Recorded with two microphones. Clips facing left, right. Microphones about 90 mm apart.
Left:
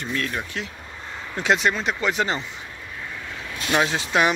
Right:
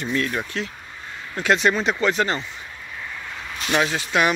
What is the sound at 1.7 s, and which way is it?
Speech, centre (ahead or behind).